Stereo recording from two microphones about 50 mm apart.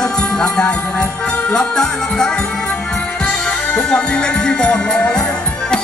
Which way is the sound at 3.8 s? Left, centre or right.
Centre.